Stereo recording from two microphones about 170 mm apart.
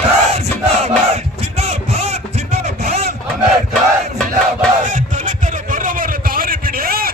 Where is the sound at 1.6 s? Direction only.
40° right (ahead or behind).